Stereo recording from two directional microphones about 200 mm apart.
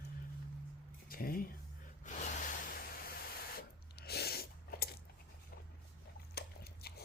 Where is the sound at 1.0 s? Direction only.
45° left (ahead or behind).